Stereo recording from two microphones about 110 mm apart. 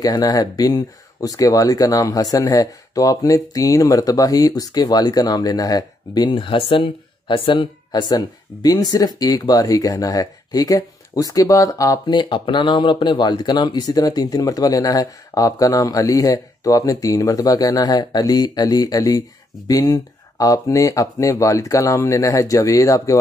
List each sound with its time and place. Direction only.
0.0 s speech: 35° left (ahead or behind)
12.2 s speech: 45° left (ahead or behind); by 23.1 s 30° left (ahead or behind)